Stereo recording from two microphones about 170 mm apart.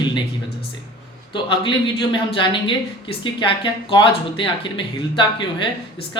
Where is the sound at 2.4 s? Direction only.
30° left (ahead or behind).